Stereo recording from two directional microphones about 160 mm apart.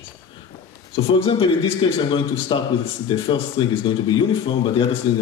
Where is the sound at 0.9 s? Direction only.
35° left (ahead or behind).